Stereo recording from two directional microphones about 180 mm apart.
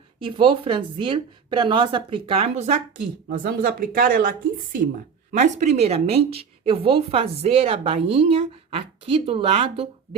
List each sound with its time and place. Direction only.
0.2 s a woman's voice: 30° right (ahead or behind)
3.2 s speech: 55° right (ahead or behind); by 10.2 s 30° right (ahead or behind)